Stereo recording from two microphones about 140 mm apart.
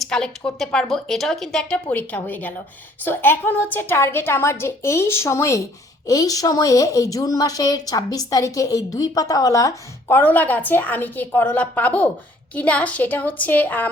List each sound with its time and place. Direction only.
0.0 s a woman's voice: 5° left (ahead or behind)